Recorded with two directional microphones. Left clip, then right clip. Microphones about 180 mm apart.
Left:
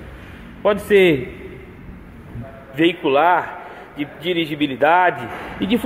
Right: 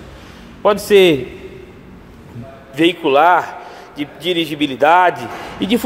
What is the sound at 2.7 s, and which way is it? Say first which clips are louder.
Speech: right 3 dB; 15° right (ahead or behind).